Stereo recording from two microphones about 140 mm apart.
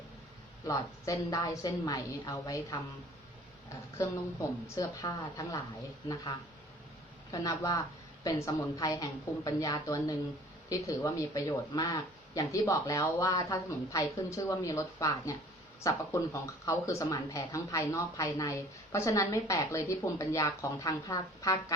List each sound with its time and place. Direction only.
0.6 s speech: 25° left (ahead or behind)
4.0 s speech: 20° left (ahead or behind)
7.3 s speech: 25° left (ahead or behind)